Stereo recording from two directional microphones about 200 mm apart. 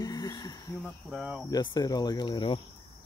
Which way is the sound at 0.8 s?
Centre (ahead or behind).